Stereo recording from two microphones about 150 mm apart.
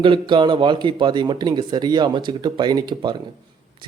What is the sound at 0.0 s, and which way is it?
Speech, 35° right (ahead or behind).